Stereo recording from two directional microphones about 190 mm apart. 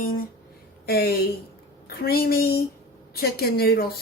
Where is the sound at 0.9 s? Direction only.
55° left (ahead or behind).